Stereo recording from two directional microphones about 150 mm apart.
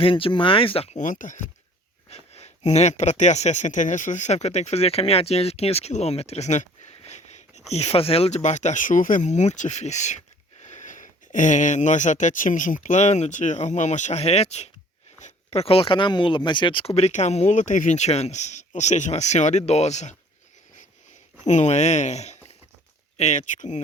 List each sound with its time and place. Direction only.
0.0 s speech: 35° left (ahead or behind); by 1.4 s 60° left (ahead or behind)
2.0 s speech: 45° left (ahead or behind)
21.4 s speech: 50° left (ahead or behind)